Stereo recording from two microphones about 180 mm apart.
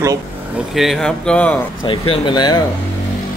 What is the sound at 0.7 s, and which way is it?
Speech, centre (ahead or behind).